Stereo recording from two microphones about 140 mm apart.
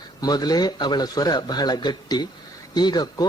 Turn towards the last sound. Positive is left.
turn(degrees=30)  # may be behind; listen again after turning